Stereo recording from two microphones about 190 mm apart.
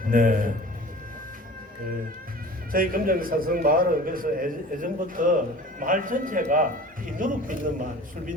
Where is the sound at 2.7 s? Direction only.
50° right (ahead or behind).